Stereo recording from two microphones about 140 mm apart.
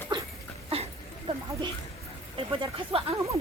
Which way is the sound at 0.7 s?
45° right (ahead or behind).